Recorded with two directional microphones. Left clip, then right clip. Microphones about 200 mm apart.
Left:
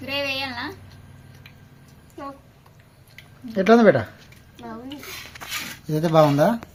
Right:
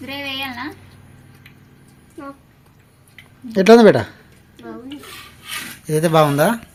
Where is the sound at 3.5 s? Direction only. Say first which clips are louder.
Right 6 dB; 50° right (ahead or behind).